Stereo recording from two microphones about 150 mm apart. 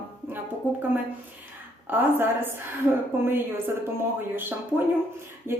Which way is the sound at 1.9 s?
15° right (ahead or behind).